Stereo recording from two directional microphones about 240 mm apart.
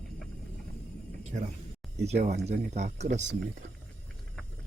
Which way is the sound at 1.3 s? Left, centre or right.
Right.